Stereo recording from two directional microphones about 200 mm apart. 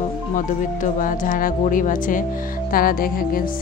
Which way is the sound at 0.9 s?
40° left (ahead or behind).